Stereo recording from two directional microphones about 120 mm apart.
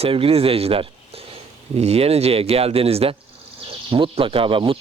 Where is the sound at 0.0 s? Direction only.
55° right (ahead or behind).